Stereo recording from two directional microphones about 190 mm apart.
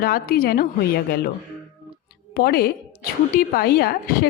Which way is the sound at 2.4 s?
55° left (ahead or behind).